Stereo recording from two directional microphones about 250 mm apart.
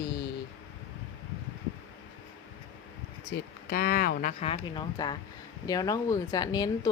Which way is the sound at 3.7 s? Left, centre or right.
Left.